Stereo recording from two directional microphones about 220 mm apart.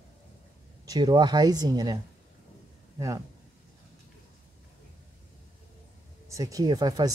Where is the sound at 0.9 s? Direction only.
20° right (ahead or behind).